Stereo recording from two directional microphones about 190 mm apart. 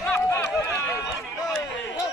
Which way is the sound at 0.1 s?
15° left (ahead or behind).